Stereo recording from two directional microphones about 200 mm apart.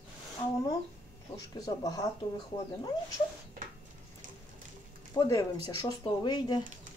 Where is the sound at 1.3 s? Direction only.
15° left (ahead or behind).